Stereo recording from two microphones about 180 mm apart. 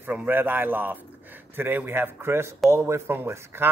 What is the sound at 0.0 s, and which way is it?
Speech, 10° right (ahead or behind).